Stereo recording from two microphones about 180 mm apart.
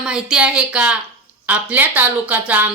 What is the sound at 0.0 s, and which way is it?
Speech, 5° right (ahead or behind).